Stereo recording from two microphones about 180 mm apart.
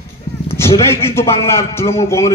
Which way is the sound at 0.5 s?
15° left (ahead or behind).